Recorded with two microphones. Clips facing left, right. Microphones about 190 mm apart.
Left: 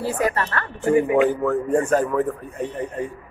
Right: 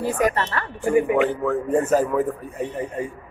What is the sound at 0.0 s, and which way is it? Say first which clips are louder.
Speech: right 1 dB; 15° right (ahead or behind).